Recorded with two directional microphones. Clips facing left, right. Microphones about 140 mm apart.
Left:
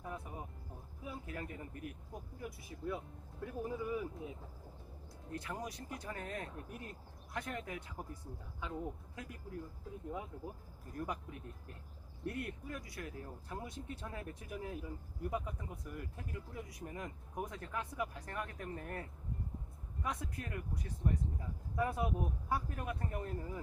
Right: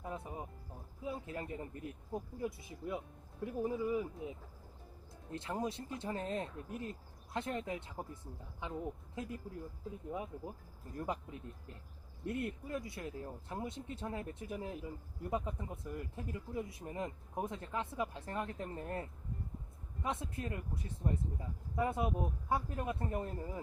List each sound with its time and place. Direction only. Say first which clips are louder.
0.0 s speech: right 2 dB; 20° right (ahead or behind)
5.3 s speech: right 4 dB; 25° right (ahead or behind)